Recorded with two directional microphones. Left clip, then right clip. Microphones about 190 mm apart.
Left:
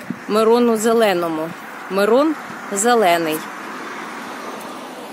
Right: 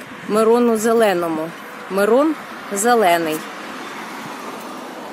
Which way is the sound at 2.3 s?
60° right (ahead or behind).